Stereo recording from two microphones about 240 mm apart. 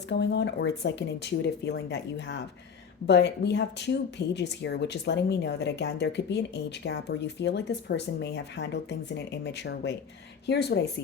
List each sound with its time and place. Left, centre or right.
0.1 s speech: left